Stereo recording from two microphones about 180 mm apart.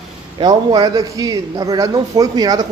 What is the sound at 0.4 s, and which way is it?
Speech, 25° right (ahead or behind).